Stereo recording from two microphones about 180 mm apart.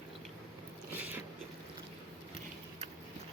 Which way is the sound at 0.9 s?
10° right (ahead or behind).